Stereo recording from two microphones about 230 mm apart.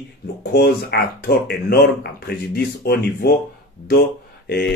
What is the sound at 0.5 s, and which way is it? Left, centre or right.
Speech, left.